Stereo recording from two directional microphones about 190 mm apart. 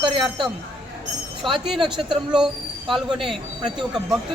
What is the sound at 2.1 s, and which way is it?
Speech, 5° right (ahead or behind).